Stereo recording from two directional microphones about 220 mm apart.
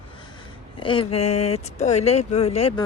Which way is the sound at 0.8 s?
25° left (ahead or behind).